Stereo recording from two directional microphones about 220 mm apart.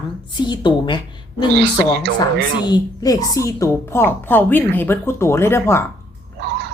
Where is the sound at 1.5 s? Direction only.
50° right (ahead or behind).